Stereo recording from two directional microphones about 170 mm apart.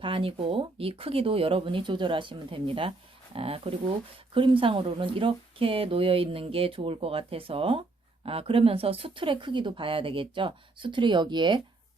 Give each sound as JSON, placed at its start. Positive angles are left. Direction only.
{"t": 0.0, "sound": "a woman's voice", "side_deg": -30}